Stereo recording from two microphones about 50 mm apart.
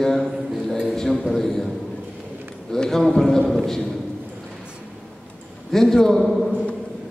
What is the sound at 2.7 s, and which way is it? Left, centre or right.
A man's voice, centre.